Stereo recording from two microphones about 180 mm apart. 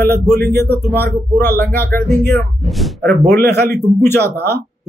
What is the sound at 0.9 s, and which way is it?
A man's voice, 10° left (ahead or behind).